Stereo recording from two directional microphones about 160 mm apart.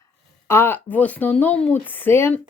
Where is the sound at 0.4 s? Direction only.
15° left (ahead or behind).